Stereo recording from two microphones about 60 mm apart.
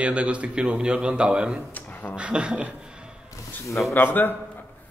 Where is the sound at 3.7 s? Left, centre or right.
Left.